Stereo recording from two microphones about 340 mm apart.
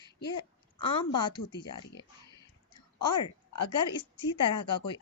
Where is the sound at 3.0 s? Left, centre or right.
Centre.